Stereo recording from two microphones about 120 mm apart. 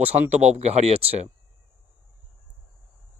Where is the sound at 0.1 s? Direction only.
70° right (ahead or behind).